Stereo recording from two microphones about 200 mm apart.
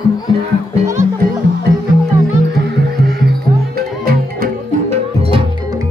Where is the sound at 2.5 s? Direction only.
55° right (ahead or behind).